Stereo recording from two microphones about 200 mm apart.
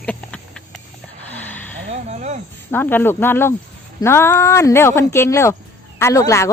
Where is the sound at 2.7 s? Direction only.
10° left (ahead or behind).